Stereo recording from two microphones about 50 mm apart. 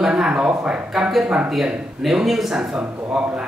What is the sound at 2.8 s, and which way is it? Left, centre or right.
Speech, right.